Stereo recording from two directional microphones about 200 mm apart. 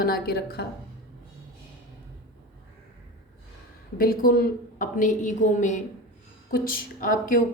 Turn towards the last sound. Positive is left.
turn(degrees=45)  # may be behind; listen again after turning